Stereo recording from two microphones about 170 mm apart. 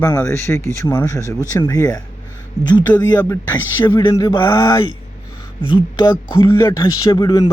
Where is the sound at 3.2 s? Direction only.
10° left (ahead or behind).